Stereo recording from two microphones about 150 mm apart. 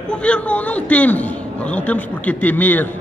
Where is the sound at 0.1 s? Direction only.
5° left (ahead or behind).